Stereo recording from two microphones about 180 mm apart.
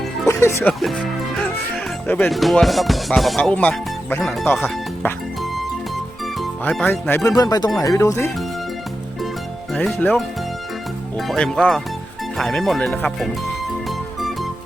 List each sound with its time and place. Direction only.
0.3 s music: 15° left (ahead or behind)
0.7 s music: centre (ahead or behind)
2.3 s speech: centre (ahead or behind)
4.4 s speech: 10° left (ahead or behind)
4.7 s music: centre (ahead or behind)
6.4 s speech: 5° left (ahead or behind)
9.7 s speech: 10° left (ahead or behind)
12.4 s music: centre (ahead or behind)